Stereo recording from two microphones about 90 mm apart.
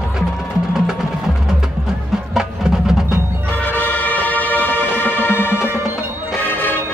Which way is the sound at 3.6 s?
20° left (ahead or behind).